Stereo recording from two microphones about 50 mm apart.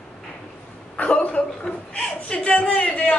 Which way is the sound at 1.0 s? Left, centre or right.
Left.